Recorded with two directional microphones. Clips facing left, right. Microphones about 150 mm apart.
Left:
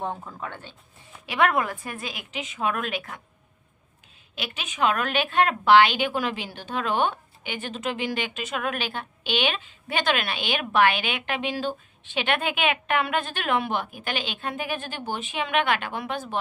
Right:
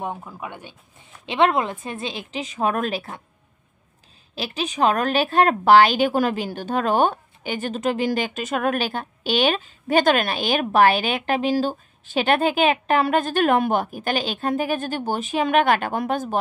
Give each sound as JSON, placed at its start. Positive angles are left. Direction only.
{"t": 0.0, "sound": "speech", "side_deg": -10}
{"t": 1.2, "sound": "a woman's voice", "side_deg": -25}
{"t": 4.4, "sound": "a woman's voice", "side_deg": -35}